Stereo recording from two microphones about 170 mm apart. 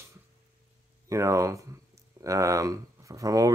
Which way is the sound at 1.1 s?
15° right (ahead or behind).